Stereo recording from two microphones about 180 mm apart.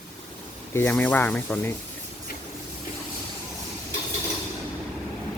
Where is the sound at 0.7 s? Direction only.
10° left (ahead or behind).